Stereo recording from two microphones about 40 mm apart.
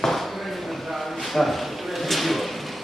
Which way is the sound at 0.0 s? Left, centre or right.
Centre.